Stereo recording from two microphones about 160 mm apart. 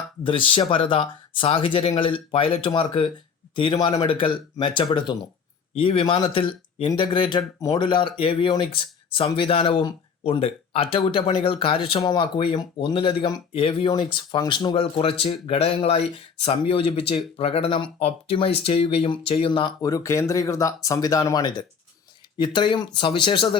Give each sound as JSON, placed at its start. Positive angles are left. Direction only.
{"t": 0.3, "sound": "speech", "side_deg": 30}